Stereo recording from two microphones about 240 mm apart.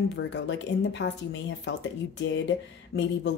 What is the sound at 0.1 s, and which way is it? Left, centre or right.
Speech, left.